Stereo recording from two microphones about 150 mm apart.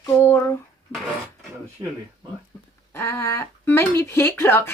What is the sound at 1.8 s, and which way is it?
Speech, 25° right (ahead or behind).